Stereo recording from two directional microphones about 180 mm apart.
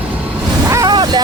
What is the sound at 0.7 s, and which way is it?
Boat, 20° right (ahead or behind).